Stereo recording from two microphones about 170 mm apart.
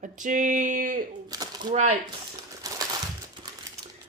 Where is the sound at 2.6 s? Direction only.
20° right (ahead or behind).